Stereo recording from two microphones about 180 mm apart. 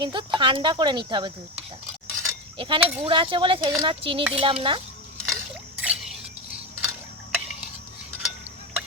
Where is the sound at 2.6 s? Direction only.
30° right (ahead or behind).